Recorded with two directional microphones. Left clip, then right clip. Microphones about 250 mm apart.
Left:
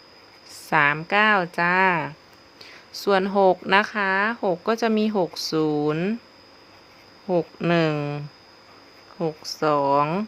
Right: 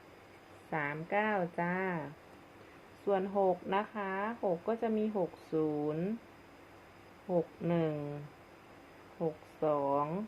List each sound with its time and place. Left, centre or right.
0.7 s speech: left
7.3 s speech: left